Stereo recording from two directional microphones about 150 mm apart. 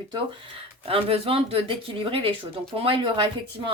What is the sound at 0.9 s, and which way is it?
Speech, 40° right (ahead or behind).